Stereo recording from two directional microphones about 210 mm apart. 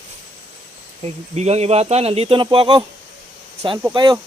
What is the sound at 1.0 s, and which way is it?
Speech, 30° right (ahead or behind).